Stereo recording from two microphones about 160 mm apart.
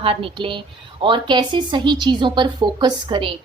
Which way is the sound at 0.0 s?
35° right (ahead or behind).